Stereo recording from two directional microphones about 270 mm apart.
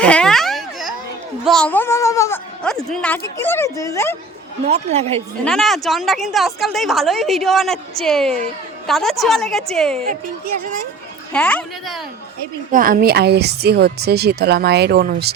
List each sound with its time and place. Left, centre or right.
0.0 s a sound: centre
1.5 s speech: centre
4.6 s speech: right
5.5 s a woman's voice: centre
11.3 s a woman's voice: centre
12.7 s speech: right